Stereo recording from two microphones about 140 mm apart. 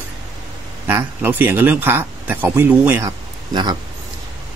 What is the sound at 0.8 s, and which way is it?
Speech, 15° right (ahead or behind).